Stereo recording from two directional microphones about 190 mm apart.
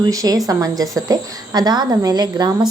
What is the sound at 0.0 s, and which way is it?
Speech, 20° right (ahead or behind).